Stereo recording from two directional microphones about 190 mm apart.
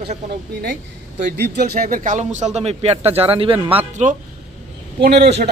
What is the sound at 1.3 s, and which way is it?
A man's voice, 60° right (ahead or behind).